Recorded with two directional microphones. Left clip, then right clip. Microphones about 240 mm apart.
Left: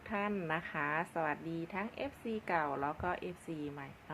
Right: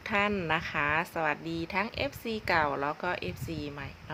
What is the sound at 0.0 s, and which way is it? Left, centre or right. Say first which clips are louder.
Speech: right 9 dB; centre.